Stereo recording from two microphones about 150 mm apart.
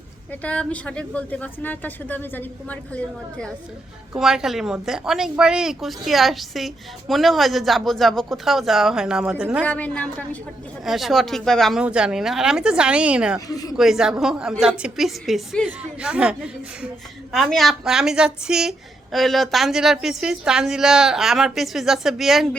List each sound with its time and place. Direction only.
0.4 s speech: 5° left (ahead or behind)
4.1 s speech: 5° right (ahead or behind)
9.6 s speech: 10° left (ahead or behind)
10.8 s speech: centre (ahead or behind)
13.5 s speech: 25° left (ahead or behind)
13.7 s speech: 5° right (ahead or behind)
17.3 s speech: centre (ahead or behind)